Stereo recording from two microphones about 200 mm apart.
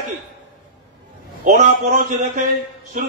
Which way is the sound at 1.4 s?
40° right (ahead or behind).